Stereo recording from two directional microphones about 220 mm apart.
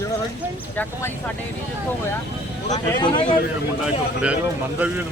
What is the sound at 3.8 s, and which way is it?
Speech, 5° right (ahead or behind).